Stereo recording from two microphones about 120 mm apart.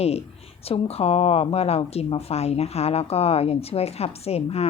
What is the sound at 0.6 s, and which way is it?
A woman's voice, 55° left (ahead or behind).